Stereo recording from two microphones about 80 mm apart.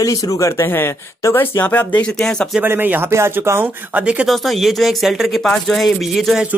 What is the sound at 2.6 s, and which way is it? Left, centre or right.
Speech, right.